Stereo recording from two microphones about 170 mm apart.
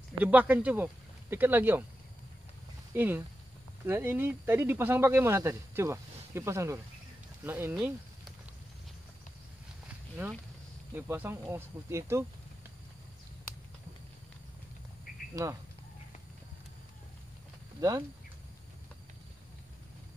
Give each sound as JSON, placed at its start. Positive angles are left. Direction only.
{"t": 0.2, "sound": "speech", "side_deg": -10}
{"t": 2.9, "sound": "speech", "side_deg": -10}
{"t": 11.0, "sound": "speech", "side_deg": -10}
{"t": 15.4, "sound": "speech", "side_deg": -20}
{"t": 17.7, "sound": "speech", "side_deg": -20}